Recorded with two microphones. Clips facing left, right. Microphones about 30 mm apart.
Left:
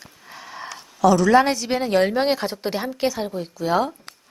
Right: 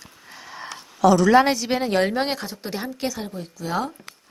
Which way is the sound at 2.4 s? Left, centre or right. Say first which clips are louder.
Left 7 dB; left.